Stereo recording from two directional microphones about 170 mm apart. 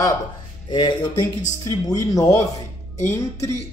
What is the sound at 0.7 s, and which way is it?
Speech, 25° left (ahead or behind).